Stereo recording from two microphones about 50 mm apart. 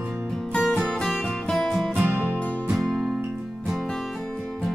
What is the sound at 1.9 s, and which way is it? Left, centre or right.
Music, right.